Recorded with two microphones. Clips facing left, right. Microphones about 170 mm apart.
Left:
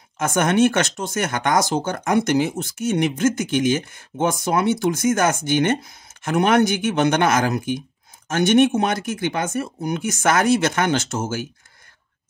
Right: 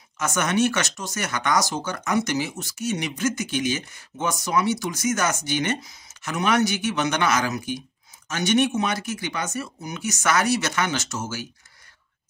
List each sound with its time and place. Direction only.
0.2 s speech: 55° left (ahead or behind)